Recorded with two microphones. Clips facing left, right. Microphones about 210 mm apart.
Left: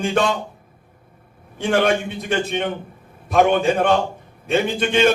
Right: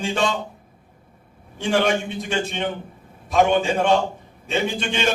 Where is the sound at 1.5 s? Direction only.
55° left (ahead or behind).